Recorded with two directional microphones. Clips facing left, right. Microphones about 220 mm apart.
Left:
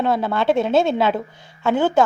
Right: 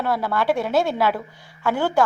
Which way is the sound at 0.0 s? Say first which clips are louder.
Left 3 dB; 25° left (ahead or behind).